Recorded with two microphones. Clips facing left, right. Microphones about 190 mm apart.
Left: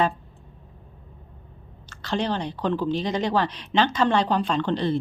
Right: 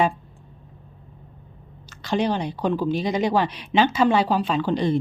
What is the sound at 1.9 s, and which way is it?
Speech, 10° right (ahead or behind).